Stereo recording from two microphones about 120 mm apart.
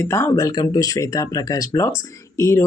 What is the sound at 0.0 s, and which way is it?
Speech, 20° left (ahead or behind).